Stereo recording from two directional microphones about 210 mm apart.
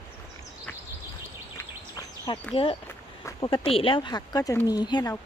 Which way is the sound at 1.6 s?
15° left (ahead or behind).